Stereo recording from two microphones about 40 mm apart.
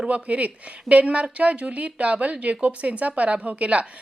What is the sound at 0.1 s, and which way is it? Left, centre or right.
Speech, right.